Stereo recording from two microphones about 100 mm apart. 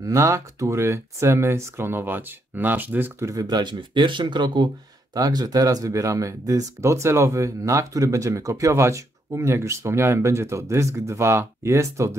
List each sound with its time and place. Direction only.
0.0 s speech: 30° right (ahead or behind)
3.3 s speech: 45° right (ahead or behind)
5.1 s speech: 40° right (ahead or behind)